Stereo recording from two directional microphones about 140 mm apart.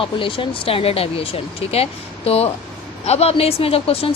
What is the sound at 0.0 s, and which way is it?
A woman's voice, 40° left (ahead or behind).